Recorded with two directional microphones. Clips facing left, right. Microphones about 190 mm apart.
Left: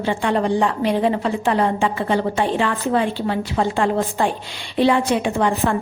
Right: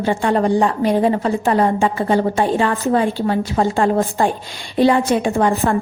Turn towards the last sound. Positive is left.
turn(degrees=-45)  # may be behind; listen again after turning